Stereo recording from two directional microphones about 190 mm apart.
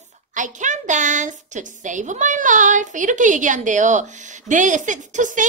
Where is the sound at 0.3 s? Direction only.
40° right (ahead or behind).